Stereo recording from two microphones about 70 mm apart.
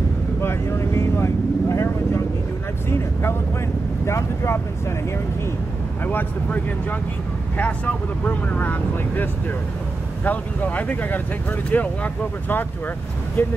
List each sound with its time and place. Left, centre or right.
0.4 s vehicle: left
2.9 s speech: left
6.0 s speech: left